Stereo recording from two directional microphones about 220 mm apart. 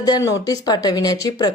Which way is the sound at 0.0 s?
15° left (ahead or behind).